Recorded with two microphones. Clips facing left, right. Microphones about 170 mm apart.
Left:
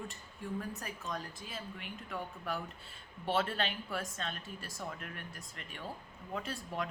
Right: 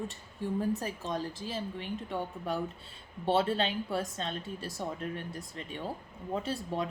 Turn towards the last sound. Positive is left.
turn(degrees=-25)  # may be behind; listen again after turning